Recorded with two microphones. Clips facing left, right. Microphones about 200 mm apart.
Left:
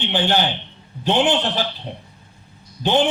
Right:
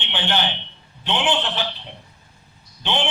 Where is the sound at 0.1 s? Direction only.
40° left (ahead or behind).